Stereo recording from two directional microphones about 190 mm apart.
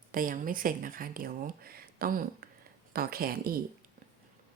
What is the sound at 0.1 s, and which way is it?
Speech, 45° right (ahead or behind).